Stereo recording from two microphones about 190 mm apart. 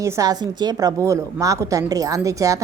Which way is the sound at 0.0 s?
15° right (ahead or behind).